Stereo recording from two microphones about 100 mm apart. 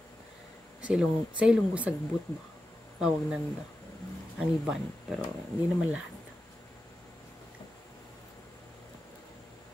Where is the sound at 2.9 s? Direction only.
5° right (ahead or behind).